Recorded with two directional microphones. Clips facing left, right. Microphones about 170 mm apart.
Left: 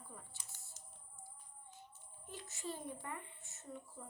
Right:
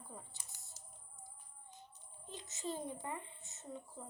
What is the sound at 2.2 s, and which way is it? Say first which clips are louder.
A child's voice: right 2 dB; 20° right (ahead or behind).